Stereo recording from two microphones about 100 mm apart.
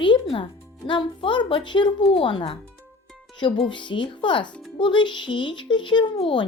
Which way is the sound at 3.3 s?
50° left (ahead or behind).